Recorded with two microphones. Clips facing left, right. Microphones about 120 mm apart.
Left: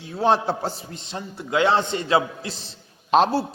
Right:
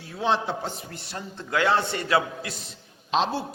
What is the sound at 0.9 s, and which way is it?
A man's voice, 20° left (ahead or behind).